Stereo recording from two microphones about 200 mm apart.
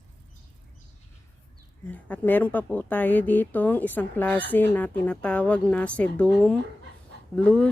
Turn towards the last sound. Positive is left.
turn(degrees=5)  # may be behind; listen again after turning